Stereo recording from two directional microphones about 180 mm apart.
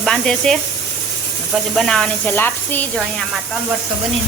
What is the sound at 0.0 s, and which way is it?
Speech, 5° left (ahead or behind).